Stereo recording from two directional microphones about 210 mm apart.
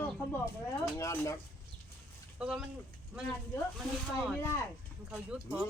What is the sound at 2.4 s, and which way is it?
Speech, 5° right (ahead or behind).